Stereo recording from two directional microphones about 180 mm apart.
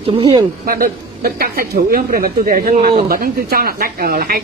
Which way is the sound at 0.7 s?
55° right (ahead or behind).